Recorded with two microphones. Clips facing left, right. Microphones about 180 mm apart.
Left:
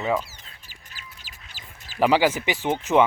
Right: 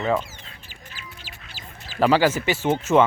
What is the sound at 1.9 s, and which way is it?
Speech, 15° left (ahead or behind).